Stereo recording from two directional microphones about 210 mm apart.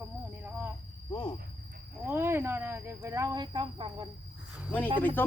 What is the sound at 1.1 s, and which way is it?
Cricket, 20° left (ahead or behind).